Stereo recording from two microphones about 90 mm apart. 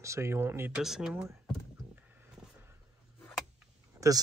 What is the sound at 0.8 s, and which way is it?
Speech, 5° right (ahead or behind).